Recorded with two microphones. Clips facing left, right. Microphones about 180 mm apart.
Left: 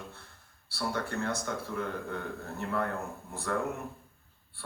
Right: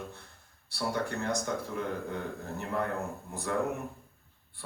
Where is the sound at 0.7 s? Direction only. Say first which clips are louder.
Right 1 dB; 20° right (ahead or behind).